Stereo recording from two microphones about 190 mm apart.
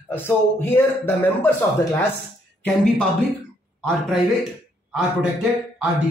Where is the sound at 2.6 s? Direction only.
5° left (ahead or behind).